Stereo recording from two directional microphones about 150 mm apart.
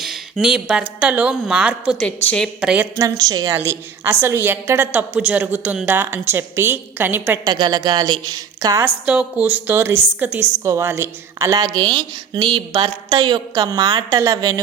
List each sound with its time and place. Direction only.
0.0 s a woman's voice: 5° right (ahead or behind)
2.0 s a woman's voice: 5° left (ahead or behind)
2.6 s a woman's voice: 5° right (ahead or behind)
3.0 s a woman's voice: 25° right (ahead or behind)
7.4 s a woman's voice: 30° right (ahead or behind)
8.8 s a woman's voice: 10° right (ahead or behind)